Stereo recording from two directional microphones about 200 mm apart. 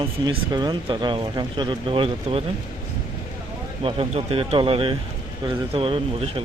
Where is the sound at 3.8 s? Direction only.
30° right (ahead or behind).